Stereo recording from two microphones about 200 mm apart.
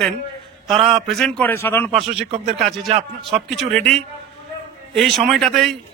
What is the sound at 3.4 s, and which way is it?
Speech, 5° left (ahead or behind).